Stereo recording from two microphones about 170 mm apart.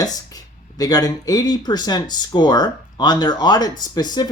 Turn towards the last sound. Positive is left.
turn(degrees=25)  # may be behind; listen again after turning